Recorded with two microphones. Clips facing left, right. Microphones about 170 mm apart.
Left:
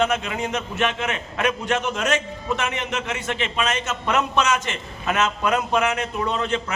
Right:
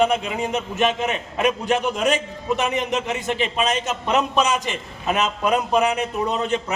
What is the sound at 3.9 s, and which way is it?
A man's voice, 15° right (ahead or behind).